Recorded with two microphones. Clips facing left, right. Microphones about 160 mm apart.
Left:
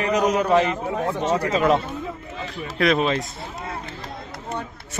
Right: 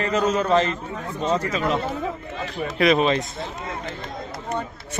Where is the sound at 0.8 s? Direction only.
75° left (ahead or behind).